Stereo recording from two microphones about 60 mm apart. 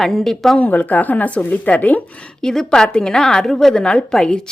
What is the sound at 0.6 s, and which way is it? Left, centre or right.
A woman's voice, left.